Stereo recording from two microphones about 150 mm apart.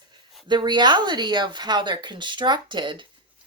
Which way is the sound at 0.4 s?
30° right (ahead or behind).